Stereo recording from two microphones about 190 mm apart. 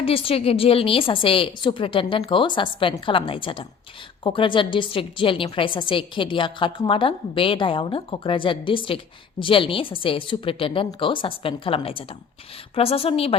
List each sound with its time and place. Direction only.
0.0 s a woman's voice: 30° left (ahead or behind)